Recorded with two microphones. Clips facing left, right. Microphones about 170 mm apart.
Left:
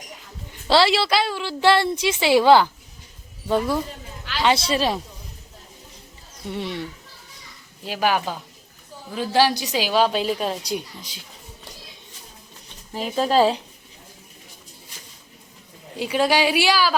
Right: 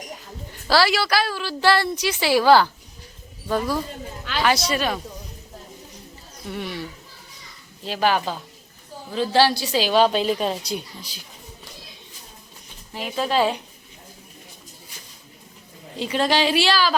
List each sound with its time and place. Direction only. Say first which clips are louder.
0.7 s a woman's voice: left 2 dB; 25° left (ahead or behind)
4.4 s a woman's voice: left 2 dB; 25° left (ahead or behind)
6.5 s a woman's voice: left 2 dB; 25° left (ahead or behind)
7.9 s a woman's voice: right 1 dB; 10° left (ahead or behind)
10.7 s a woman's voice: left 2 dB; 20° left (ahead or behind)
12.9 s speech: left 3 dB; 40° left (ahead or behind)
16.0 s a woman's voice: left 1 dB; 10° left (ahead or behind)